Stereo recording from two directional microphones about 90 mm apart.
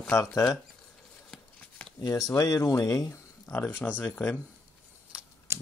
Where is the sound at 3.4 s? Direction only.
20° left (ahead or behind).